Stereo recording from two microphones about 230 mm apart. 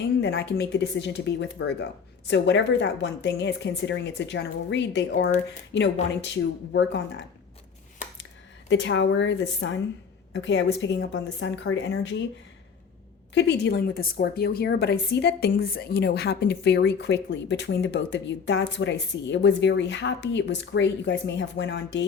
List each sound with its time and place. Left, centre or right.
0.0 s a woman's voice: left
8.7 s a woman's voice: left
13.3 s a woman's voice: left